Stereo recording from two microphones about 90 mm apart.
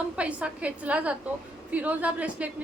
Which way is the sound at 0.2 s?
15° right (ahead or behind).